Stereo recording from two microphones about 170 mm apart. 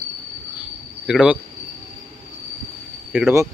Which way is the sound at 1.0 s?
5° right (ahead or behind).